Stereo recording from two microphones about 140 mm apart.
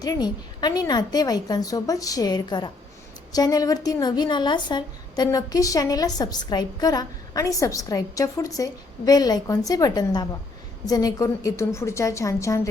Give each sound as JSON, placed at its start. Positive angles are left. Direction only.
{"t": 0.0, "sound": "a woman's voice", "side_deg": 30}